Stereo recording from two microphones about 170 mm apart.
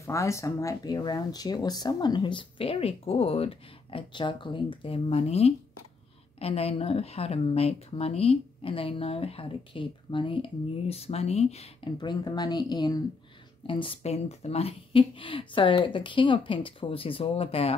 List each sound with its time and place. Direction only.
0.0 s speech: 15° left (ahead or behind); by 17.7 s 35° left (ahead or behind)